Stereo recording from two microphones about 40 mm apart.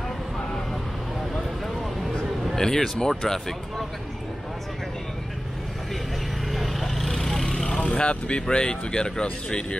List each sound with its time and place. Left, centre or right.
2.5 s speech: centre
6.5 s vehicle: centre
7.8 s speech: left